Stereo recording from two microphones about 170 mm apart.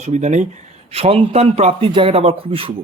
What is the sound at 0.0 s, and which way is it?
A man's voice, 45° right (ahead or behind).